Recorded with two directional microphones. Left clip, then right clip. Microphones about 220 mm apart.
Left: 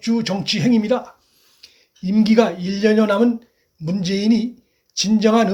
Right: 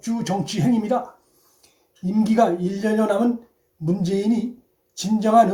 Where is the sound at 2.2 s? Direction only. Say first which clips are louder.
Left 2 dB; 25° left (ahead or behind).